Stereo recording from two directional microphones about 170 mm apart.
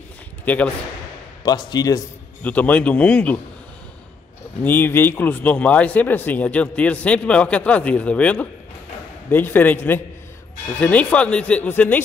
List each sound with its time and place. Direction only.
1.4 s speech: 25° left (ahead or behind)
2.4 s speech: 10° left (ahead or behind)
4.6 s speech: 10° left (ahead or behind)